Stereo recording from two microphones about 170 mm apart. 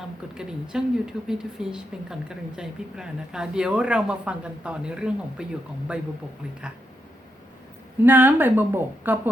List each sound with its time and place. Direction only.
0.3 s speech: 5° right (ahead or behind)
8.0 s a woman's voice: 10° right (ahead or behind)